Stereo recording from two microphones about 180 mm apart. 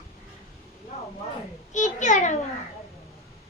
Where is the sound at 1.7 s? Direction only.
45° left (ahead or behind).